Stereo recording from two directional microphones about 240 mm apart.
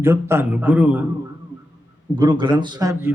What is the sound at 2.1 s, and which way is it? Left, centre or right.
Speech, centre.